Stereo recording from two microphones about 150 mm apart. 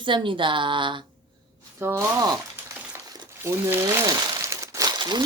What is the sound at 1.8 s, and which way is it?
Speech, 20° right (ahead or behind).